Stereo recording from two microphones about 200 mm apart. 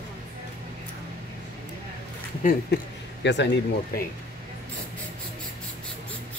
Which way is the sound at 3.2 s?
60° left (ahead or behind).